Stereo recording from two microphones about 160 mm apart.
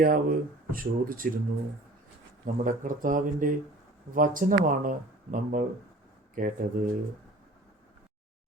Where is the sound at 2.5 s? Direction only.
55° right (ahead or behind).